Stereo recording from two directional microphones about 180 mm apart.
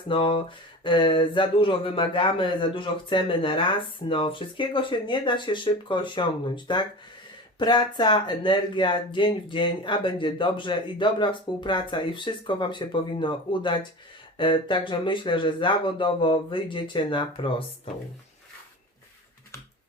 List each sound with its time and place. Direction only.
0.1 s speech: 30° left (ahead or behind)